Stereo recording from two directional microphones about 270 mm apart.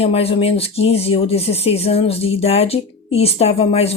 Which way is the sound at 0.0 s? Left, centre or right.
Left.